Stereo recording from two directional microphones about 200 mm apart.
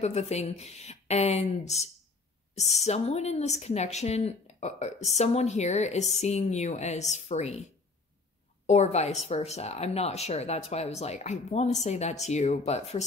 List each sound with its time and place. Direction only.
0.0 s speech: 35° left (ahead or behind)
8.6 s speech: 35° left (ahead or behind)